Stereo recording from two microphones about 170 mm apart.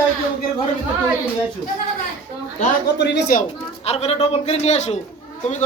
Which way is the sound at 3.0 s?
85° left.